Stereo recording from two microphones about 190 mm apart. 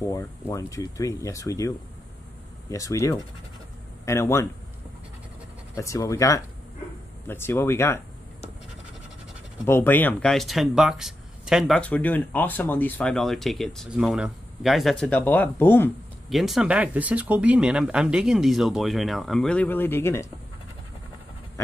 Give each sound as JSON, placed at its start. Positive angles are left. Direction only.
{"t": 0.0, "sound": "speech", "side_deg": 15}
{"t": 2.7, "sound": "speech", "side_deg": 15}
{"t": 5.8, "sound": "speech", "side_deg": 15}
{"t": 9.7, "sound": "speech", "side_deg": 10}
{"t": 11.7, "sound": "speech", "side_deg": 10}
{"t": 16.3, "sound": "speech", "side_deg": 0}